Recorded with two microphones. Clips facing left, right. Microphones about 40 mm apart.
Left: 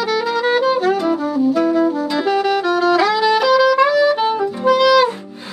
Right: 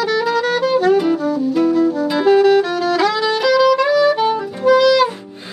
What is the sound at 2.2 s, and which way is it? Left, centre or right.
Music, centre.